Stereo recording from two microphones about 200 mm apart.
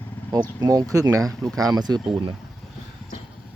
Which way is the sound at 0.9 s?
15° right (ahead or behind).